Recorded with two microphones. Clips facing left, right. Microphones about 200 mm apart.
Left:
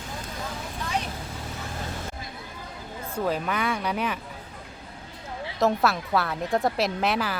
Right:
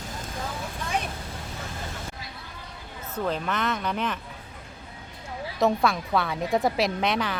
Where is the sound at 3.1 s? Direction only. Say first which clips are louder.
Left 1 dB; 10° left (ahead or behind).